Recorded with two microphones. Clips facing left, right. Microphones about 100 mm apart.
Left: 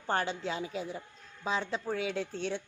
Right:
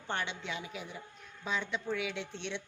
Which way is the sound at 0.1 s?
40° left (ahead or behind).